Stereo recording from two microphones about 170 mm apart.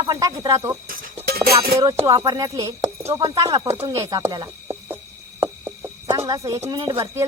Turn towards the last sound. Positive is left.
turn(degrees=-20)  # may be behind; listen again after turning